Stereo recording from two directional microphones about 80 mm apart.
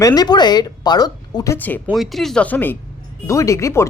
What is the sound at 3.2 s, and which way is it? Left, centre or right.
Speech, left.